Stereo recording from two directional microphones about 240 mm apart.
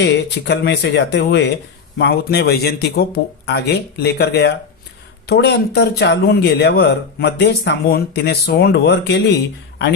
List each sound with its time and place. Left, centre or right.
0.0 s speech: left